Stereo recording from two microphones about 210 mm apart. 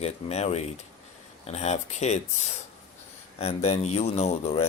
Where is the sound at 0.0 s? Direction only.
30° left (ahead or behind).